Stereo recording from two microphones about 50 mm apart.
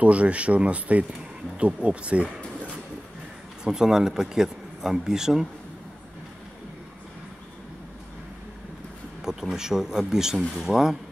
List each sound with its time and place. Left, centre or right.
0.0 s speech: right
3.6 s speech: centre
9.2 s speech: centre